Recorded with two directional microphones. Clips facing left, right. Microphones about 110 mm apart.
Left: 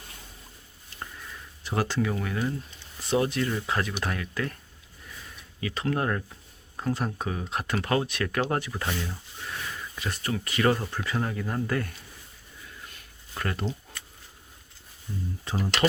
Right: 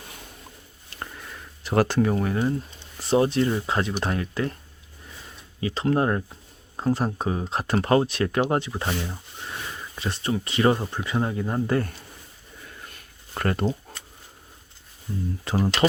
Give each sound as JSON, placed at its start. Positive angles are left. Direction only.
{"t": 0.9, "sound": "a sound", "side_deg": -65}
{"t": 2.0, "sound": "speech", "side_deg": -40}
{"t": 5.5, "sound": "speech", "side_deg": -30}
{"t": 13.3, "sound": "speech", "side_deg": -50}